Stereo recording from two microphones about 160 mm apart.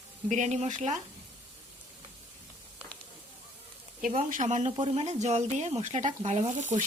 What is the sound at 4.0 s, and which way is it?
Speech, 50° right (ahead or behind).